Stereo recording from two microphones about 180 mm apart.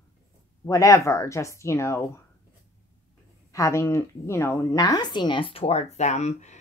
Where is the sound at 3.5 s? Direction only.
15° left (ahead or behind).